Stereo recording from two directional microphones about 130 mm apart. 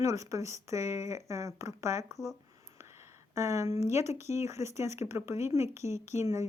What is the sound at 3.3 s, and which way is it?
Speech, 25° right (ahead or behind).